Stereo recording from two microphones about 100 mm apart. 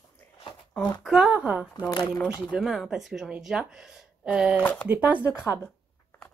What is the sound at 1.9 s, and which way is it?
Speech, 45° left (ahead or behind).